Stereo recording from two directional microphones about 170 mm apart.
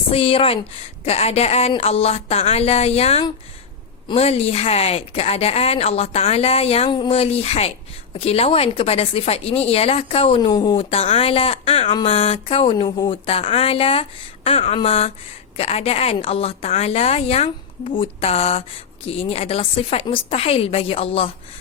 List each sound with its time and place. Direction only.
0.1 s a woman's voice: 35° left (ahead or behind)